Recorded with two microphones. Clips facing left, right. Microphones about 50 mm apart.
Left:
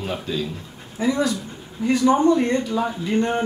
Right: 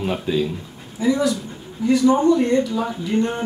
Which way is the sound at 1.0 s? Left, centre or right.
Left.